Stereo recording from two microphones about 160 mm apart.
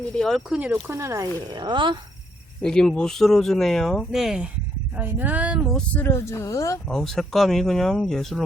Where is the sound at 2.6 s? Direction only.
5° left (ahead or behind).